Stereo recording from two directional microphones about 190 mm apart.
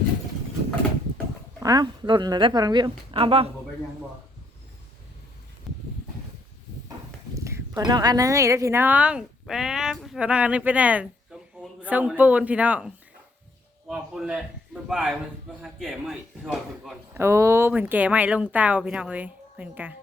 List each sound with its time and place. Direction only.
1.5 s speech: 20° right (ahead or behind)
7.3 s a man's voice: 15° right (ahead or behind)
17.2 s speech: 15° right (ahead or behind)